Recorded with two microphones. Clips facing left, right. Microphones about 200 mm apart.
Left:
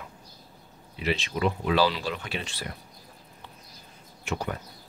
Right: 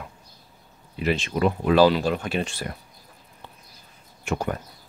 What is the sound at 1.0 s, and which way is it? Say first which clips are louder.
Speech: right 4 dB; 50° right (ahead or behind).